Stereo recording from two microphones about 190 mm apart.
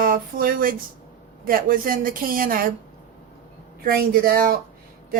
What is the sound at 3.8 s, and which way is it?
Speech, 50° right (ahead or behind).